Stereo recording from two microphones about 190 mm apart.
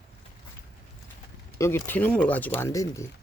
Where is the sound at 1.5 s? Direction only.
15° left (ahead or behind).